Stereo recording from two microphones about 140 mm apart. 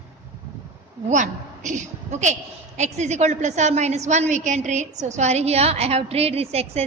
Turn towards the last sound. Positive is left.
turn(degrees=-45)  # may be behind; listen again after turning